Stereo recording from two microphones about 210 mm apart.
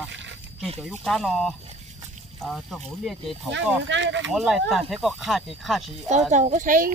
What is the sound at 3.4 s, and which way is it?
Speech, 60° right (ahead or behind).